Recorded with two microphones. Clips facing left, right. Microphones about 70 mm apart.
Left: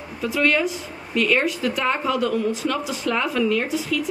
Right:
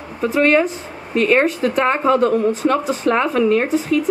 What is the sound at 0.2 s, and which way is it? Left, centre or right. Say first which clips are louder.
Speech: right 6 dB; right.